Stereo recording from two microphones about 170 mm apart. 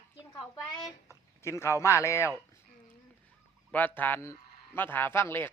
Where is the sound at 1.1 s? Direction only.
15° left (ahead or behind).